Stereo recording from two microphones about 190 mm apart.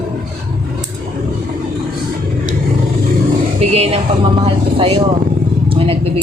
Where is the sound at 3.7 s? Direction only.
30° right (ahead or behind).